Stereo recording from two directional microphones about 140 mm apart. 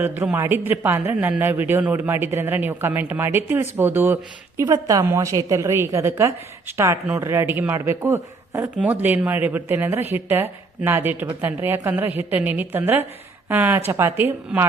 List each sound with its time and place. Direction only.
0.2 s a man's voice: 15° right (ahead or behind)